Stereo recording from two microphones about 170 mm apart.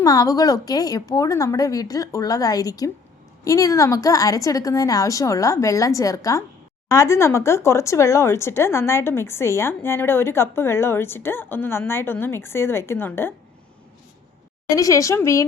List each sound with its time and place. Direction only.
0.0 s a woman's voice: 20° left (ahead or behind)
14.8 s a woman's voice: 20° left (ahead or behind)